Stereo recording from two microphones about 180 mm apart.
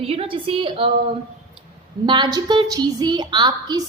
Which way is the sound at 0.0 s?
30° right (ahead or behind).